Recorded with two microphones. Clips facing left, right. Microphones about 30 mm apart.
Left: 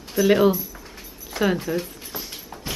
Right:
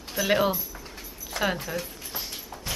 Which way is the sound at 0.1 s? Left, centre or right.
Centre.